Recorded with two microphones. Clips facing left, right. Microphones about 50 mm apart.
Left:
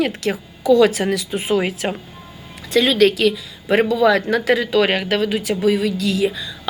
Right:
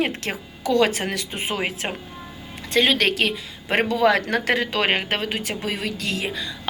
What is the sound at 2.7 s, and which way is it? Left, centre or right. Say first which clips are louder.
Speech: left 5 dB; right.